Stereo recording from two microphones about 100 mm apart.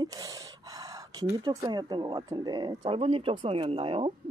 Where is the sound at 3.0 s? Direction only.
70° right (ahead or behind).